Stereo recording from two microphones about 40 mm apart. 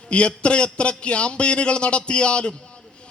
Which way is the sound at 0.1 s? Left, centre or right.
Left.